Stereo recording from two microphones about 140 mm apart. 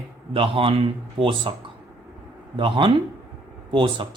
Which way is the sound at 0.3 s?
40° right (ahead or behind).